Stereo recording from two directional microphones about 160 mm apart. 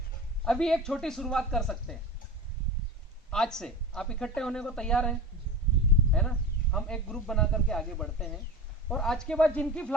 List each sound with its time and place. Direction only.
0.4 s speech: 5° left (ahead or behind)
3.2 s speech: 5° left (ahead or behind)